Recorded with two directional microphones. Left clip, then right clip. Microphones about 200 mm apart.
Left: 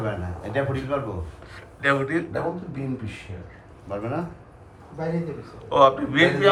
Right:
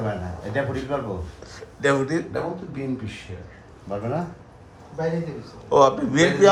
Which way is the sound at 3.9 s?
55° right (ahead or behind).